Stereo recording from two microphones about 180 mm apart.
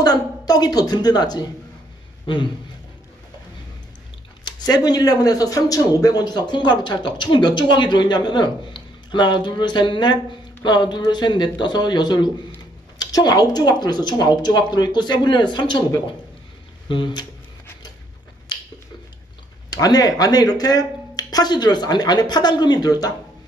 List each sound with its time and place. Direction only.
0.0 s speech: 20° left (ahead or behind)
4.5 s speech: 25° left (ahead or behind)
19.7 s speech: 20° left (ahead or behind)